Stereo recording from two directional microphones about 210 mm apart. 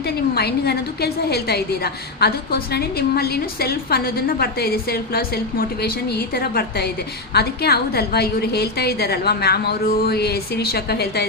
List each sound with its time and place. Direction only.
0.0 s a woman's voice: 50° left (ahead or behind)